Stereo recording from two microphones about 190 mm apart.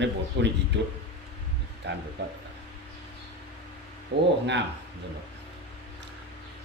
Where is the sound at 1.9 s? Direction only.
65° right (ahead or behind).